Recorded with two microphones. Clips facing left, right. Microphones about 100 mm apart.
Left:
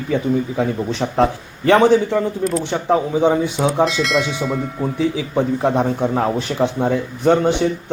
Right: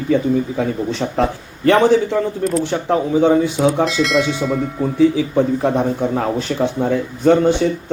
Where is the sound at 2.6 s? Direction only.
20° left (ahead or behind).